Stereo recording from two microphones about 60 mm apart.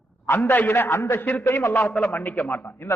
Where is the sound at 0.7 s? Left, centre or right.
Left.